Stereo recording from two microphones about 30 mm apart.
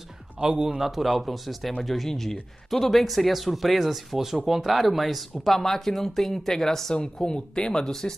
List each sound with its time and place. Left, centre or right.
0.4 s a man's voice: right
0.7 s a man's voice: centre
7.2 s speech: left
7.7 s speech: centre